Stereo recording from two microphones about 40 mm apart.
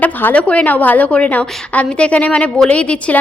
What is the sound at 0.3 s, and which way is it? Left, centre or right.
A woman's voice, left.